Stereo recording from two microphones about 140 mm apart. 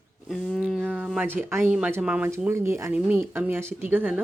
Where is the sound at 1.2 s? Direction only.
15° right (ahead or behind).